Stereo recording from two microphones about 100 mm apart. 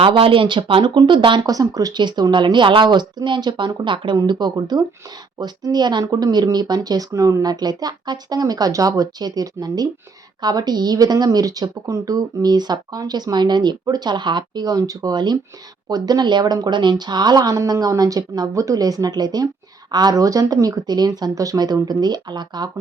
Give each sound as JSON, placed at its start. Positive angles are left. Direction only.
{"t": 0.0, "sound": "speech", "side_deg": -60}
{"t": 1.5, "sound": "speech", "side_deg": -40}